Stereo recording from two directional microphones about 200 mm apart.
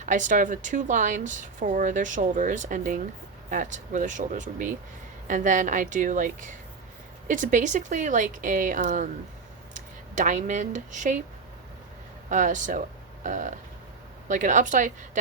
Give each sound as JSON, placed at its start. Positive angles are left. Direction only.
{"t": 0.0, "sound": "a woman's voice", "side_deg": -40}
{"t": 12.3, "sound": "a woman's voice", "side_deg": -40}